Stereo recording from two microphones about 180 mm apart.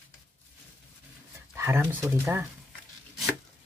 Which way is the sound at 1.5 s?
15° right (ahead or behind).